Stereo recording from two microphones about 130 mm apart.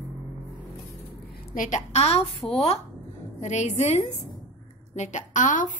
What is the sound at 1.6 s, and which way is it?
A woman's voice, 70° left (ahead or behind).